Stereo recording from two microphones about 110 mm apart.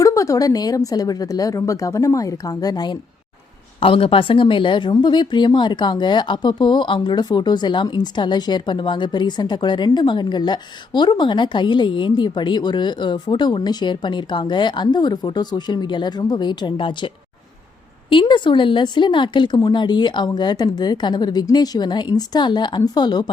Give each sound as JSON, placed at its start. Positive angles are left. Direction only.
{"t": 0.0, "sound": "a woman's voice", "side_deg": 30}
{"t": 3.8, "sound": "speech", "side_deg": 55}
{"t": 18.1, "sound": "a woman's voice", "side_deg": 45}